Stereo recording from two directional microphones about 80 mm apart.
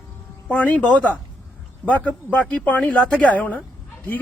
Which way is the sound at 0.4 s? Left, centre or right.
Centre.